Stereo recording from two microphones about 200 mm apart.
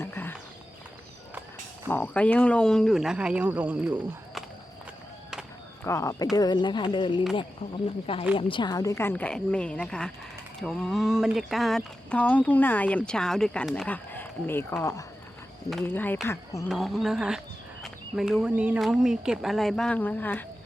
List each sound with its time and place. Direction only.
0.0 s a sound: 10° left (ahead or behind)
1.9 s speech: 10° left (ahead or behind)
5.8 s a woman's voice: 15° left (ahead or behind)
16.6 s speech: centre (ahead or behind)